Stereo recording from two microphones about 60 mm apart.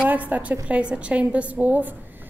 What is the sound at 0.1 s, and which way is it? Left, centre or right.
A woman's voice, right.